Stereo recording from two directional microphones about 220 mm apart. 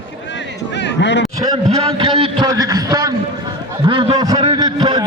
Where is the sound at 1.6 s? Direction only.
30° right (ahead or behind).